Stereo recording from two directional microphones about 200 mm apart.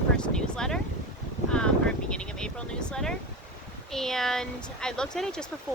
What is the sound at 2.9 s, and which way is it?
Speech, 5° left (ahead or behind).